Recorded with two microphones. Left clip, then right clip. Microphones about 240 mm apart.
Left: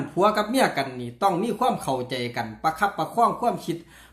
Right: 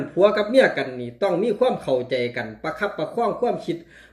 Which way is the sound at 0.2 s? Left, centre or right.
Left.